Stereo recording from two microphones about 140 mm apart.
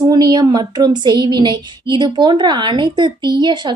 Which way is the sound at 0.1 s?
30° right (ahead or behind).